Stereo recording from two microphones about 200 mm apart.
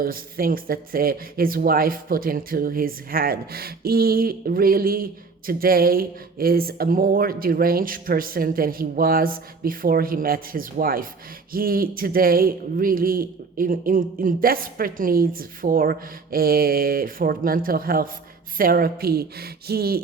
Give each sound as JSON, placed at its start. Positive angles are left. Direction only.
{"t": 0.0, "sound": "speech", "side_deg": -45}